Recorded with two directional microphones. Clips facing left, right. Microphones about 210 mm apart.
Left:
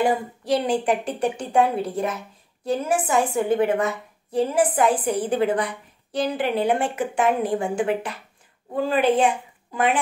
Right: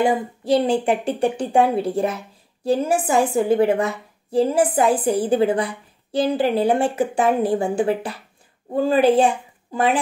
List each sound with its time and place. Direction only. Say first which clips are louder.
0.0 s a woman's voice: right 2 dB; 25° right (ahead or behind)